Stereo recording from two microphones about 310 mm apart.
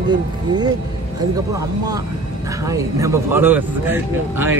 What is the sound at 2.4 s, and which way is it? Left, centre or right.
Speech, centre.